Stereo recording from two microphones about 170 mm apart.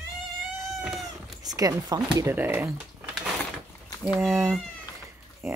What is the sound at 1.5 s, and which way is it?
Speech, 20° right (ahead or behind).